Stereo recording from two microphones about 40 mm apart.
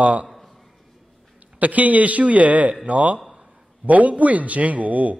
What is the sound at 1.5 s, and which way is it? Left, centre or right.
A man's voice, right.